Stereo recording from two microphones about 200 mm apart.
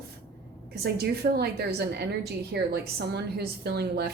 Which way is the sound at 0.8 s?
55° right (ahead or behind).